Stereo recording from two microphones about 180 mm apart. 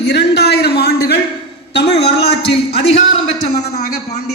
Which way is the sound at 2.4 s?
35° left (ahead or behind).